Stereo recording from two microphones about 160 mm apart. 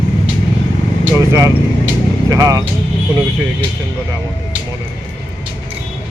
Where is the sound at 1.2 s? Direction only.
20° right (ahead or behind).